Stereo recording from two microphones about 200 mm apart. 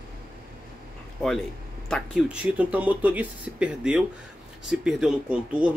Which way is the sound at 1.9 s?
5° right (ahead or behind).